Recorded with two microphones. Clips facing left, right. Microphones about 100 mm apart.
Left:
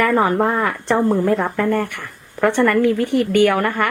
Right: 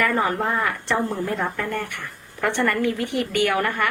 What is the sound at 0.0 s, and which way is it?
A woman's voice, 50° left (ahead or behind).